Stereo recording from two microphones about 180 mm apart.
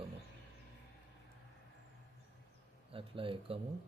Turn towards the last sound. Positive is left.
turn(degrees=-30)  # may be behind; listen again after turning